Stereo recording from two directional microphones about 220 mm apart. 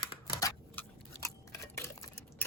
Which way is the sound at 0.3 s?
15° left (ahead or behind).